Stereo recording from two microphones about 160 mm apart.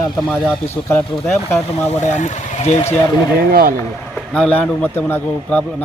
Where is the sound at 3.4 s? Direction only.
70° right (ahead or behind).